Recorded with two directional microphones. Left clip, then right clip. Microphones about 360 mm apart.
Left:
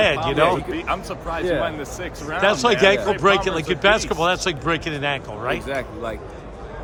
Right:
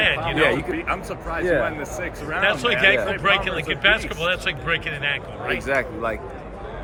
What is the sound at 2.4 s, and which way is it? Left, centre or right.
Speech, centre.